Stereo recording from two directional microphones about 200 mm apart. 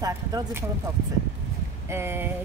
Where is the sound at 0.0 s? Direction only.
15° right (ahead or behind).